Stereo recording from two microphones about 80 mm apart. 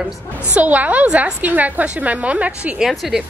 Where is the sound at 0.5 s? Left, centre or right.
Centre.